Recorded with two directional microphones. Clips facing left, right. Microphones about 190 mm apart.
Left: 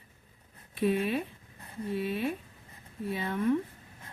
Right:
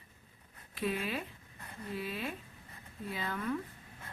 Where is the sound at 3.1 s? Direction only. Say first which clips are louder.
Left 8 dB; 25° left (ahead or behind).